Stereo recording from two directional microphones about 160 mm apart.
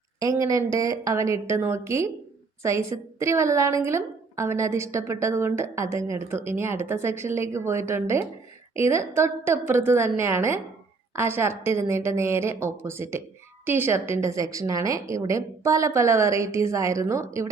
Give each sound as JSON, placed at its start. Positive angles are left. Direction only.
{"t": 0.2, "sound": "a woman's voice", "side_deg": -20}